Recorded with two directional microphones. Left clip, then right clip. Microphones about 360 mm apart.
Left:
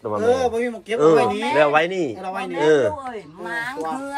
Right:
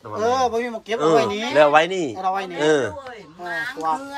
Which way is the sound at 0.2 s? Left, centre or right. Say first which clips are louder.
Even; centre.